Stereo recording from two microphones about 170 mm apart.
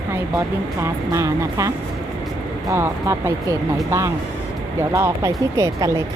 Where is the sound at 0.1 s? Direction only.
15° right (ahead or behind).